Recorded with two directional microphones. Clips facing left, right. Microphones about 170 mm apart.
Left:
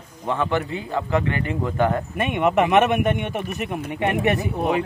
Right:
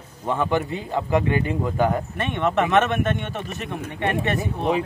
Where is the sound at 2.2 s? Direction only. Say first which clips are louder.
Left 4 dB; 15° left (ahead or behind).